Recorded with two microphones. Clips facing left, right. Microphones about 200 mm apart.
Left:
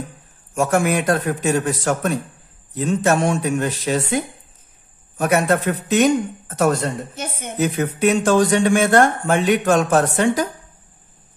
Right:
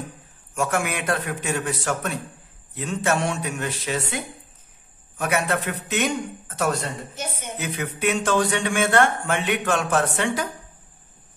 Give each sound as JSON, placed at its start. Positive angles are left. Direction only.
{"t": 0.6, "sound": "a man's voice", "side_deg": 40}
{"t": 7.5, "sound": "speech", "side_deg": 40}